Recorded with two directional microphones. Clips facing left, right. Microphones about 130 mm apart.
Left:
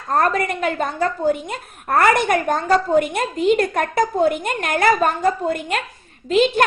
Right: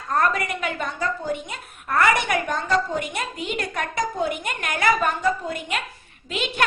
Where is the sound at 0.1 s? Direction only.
45° left (ahead or behind).